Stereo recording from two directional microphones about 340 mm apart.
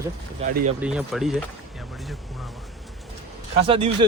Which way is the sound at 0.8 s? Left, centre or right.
Centre.